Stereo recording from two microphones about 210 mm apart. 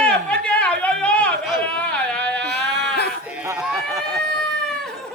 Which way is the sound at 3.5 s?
5° right (ahead or behind).